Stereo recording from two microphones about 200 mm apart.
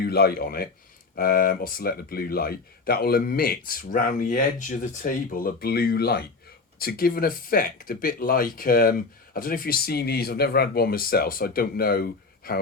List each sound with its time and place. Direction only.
0.0 s speech: 50° left (ahead or behind)